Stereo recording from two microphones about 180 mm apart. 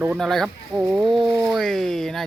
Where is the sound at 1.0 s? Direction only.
25° right (ahead or behind).